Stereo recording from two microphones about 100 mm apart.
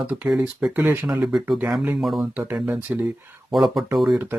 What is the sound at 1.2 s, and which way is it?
Speech, 5° right (ahead or behind).